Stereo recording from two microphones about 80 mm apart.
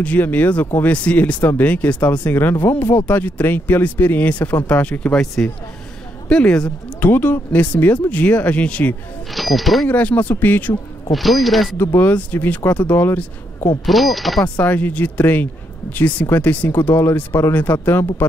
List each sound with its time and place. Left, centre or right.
0.0 s speech: centre
2.3 s speech: left
7.1 s speech: left
9.3 s speech: centre
9.8 s speech: centre
11.1 s speech: centre
11.7 s speech: left
13.8 s speech: centre
14.4 s speech: left